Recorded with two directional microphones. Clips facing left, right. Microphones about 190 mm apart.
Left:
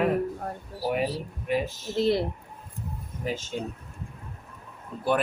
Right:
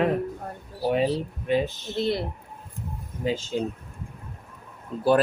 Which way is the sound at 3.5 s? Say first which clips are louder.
Right 7 dB; 25° right (ahead or behind).